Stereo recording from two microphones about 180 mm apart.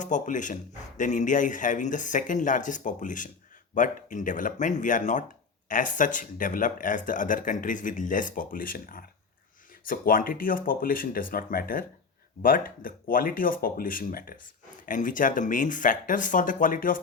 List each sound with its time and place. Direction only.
0.0 s speech: 45° left (ahead or behind)